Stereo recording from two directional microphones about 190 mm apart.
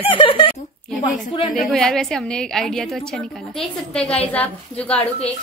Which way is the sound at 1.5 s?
5° left (ahead or behind).